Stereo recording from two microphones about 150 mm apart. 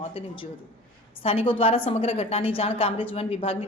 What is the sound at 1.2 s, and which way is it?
A woman's voice, 40° left (ahead or behind).